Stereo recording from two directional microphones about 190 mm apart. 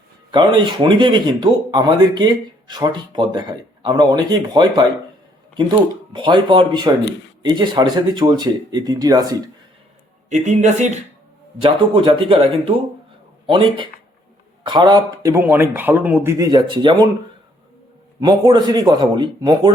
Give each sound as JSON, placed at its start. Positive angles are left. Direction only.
{"t": 0.3, "sound": "speech", "side_deg": -25}
{"t": 6.2, "sound": "speech", "side_deg": -25}
{"t": 10.2, "sound": "speech", "side_deg": -40}
{"t": 11.6, "sound": "speech", "side_deg": -25}
{"t": 14.6, "sound": "speech", "side_deg": -25}
{"t": 18.2, "sound": "speech", "side_deg": -20}